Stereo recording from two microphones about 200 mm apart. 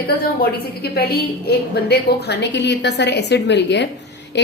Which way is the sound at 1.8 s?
55° left (ahead or behind).